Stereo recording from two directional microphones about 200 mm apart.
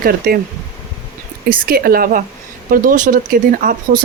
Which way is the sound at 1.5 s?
50° right (ahead or behind).